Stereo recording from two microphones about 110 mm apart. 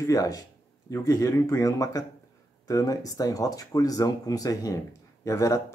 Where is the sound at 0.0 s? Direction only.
30° left (ahead or behind).